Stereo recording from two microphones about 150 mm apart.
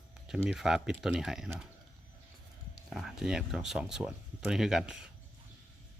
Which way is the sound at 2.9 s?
5° right (ahead or behind).